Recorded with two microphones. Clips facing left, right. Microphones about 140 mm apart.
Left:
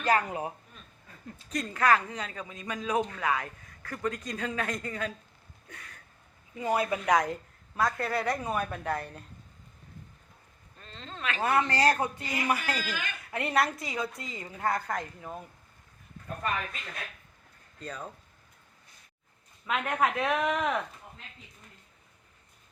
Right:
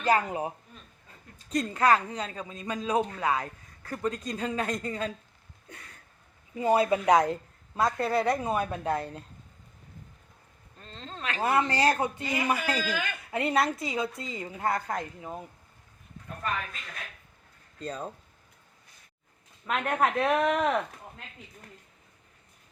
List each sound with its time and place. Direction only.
0.0 s a woman's voice: 25° right (ahead or behind)
1.5 s a man's voice: 30° right (ahead or behind)
6.6 s a woman's voice: 25° right (ahead or behind)
10.8 s a woman's voice: 35° right (ahead or behind); by 15.4 s 20° right (ahead or behind)
17.7 s a woman's voice: 30° right (ahead or behind)
19.6 s a woman's voice: centre (ahead or behind)